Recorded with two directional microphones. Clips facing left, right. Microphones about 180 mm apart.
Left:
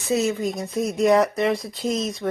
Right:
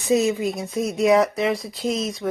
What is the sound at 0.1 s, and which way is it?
Speech, 15° right (ahead or behind).